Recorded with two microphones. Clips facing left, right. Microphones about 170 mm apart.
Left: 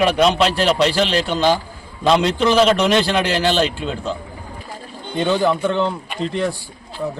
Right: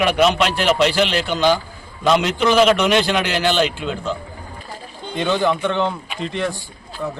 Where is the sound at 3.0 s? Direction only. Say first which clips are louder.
Left 1 dB; 35° left (ahead or behind).